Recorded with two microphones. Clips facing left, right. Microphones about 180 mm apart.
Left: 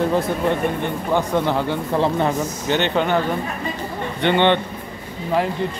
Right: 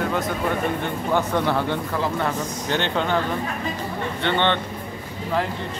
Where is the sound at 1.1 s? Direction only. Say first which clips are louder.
Left 2 dB; 15° left (ahead or behind).